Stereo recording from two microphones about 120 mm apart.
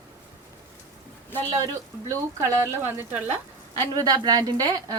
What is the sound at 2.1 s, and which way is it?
Speech, 20° right (ahead or behind).